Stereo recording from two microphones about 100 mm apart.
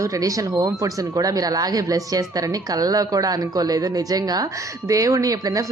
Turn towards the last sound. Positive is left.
turn(degrees=-35)  # may be behind; listen again after turning